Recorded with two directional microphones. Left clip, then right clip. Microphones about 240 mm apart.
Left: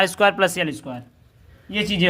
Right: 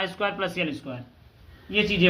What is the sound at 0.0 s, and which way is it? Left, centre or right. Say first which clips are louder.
Speech: left 10 dB; left.